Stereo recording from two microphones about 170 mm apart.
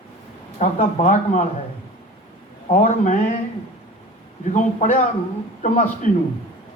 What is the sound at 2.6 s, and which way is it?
Speech, 50° left (ahead or behind).